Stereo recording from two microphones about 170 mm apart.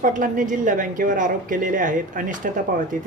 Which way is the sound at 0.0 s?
50° right (ahead or behind).